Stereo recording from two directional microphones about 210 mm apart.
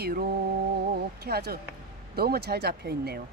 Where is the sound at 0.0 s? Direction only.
50° right (ahead or behind).